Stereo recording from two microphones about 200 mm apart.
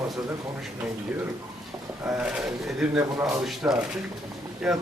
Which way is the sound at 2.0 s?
5° right (ahead or behind).